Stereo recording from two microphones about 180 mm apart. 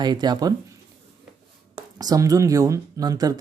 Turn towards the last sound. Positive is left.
turn(degrees=-20)  # may be behind; listen again after turning